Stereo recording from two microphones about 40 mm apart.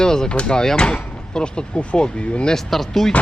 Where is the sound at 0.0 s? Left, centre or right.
Centre.